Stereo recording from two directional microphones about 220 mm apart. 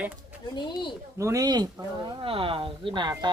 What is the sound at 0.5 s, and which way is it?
Speech, 20° left (ahead or behind).